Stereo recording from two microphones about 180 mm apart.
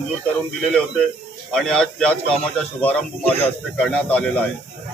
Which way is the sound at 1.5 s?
5° left (ahead or behind).